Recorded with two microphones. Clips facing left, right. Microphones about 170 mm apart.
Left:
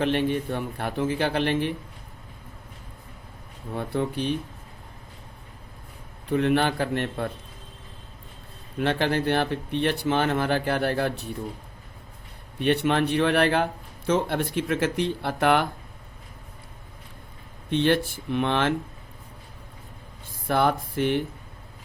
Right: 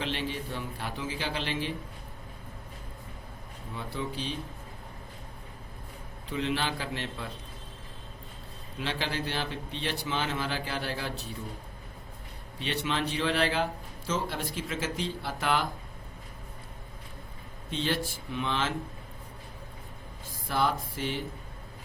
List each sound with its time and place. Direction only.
0.0 s speech: 55° left (ahead or behind)
3.7 s speech: 55° left (ahead or behind)
6.2 s speech: 55° left (ahead or behind)
8.8 s speech: 55° left (ahead or behind)
12.5 s speech: 55° left (ahead or behind)
17.7 s speech: 60° left (ahead or behind)
20.5 s speech: 60° left (ahead or behind)